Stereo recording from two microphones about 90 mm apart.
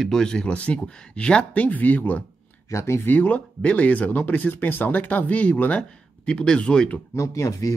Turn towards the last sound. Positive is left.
turn(degrees=35)  # may be behind; listen again after turning